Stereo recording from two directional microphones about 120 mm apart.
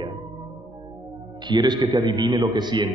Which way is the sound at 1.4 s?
35° right (ahead or behind).